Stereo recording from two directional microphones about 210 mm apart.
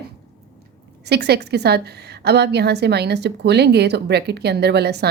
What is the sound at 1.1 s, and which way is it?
A woman's voice, 50° right (ahead or behind).